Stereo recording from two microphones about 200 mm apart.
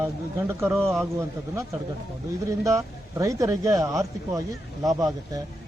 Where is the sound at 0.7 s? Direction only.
Centre (ahead or behind).